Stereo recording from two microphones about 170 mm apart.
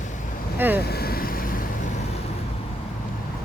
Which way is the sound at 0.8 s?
65° left (ahead or behind).